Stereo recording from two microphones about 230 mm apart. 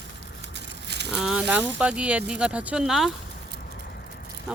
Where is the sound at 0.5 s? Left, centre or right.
Right.